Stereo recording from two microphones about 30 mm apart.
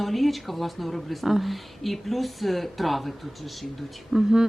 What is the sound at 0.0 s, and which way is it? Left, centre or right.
Speech, centre.